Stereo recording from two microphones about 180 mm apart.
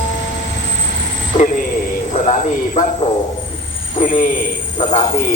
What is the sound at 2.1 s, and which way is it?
Speech, 40° left (ahead or behind).